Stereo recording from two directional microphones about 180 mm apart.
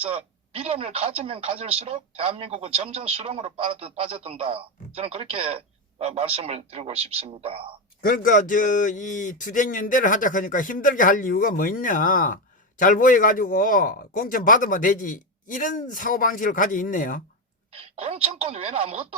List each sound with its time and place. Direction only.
0.0 s a woman's voice: 30° right (ahead or behind)
8.0 s speech: 50° left (ahead or behind)
17.7 s a woman's voice: 35° right (ahead or behind)